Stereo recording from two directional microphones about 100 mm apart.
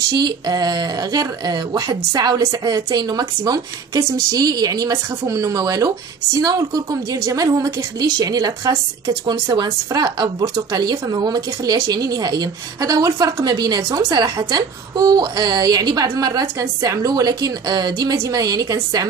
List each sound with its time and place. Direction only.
0.1 s speech: 40° right (ahead or behind)
9.2 s speech: 50° right (ahead or behind)